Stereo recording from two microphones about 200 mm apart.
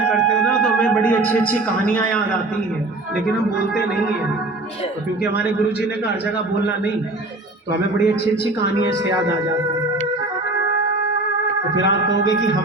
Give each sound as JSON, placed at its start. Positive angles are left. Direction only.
{"t": 0.1, "sound": "speech", "side_deg": 5}
{"t": 8.6, "sound": "music", "side_deg": 55}
{"t": 11.8, "sound": "music", "side_deg": 65}